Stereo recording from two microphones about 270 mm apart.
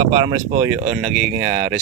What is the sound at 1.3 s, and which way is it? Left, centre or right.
Speech, right.